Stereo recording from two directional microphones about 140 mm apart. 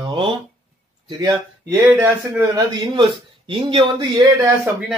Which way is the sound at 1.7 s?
15° right (ahead or behind).